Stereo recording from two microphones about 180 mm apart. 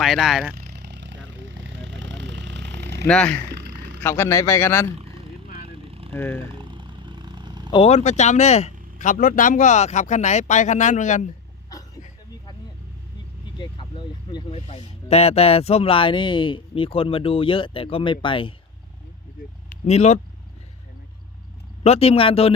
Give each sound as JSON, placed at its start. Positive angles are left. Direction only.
{"t": 0.0, "sound": "speech", "side_deg": 0}
{"t": 0.5, "sound": "a sound", "side_deg": -60}
{"t": 3.1, "sound": "speech", "side_deg": 5}
{"t": 4.0, "sound": "speech", "side_deg": 15}
{"t": 5.6, "sound": "a sound", "side_deg": -30}
{"t": 6.1, "sound": "speech", "side_deg": 10}
{"t": 6.5, "sound": "a sound", "side_deg": -25}
{"t": 7.7, "sound": "speech", "side_deg": 35}
{"t": 13.6, "sound": "vehicle", "side_deg": 25}
{"t": 14.7, "sound": "speech", "side_deg": 35}
{"t": 19.7, "sound": "speech", "side_deg": 40}
{"t": 21.8, "sound": "speech", "side_deg": 35}